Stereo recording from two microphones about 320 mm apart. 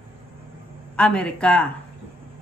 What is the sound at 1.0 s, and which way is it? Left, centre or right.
Speech, centre.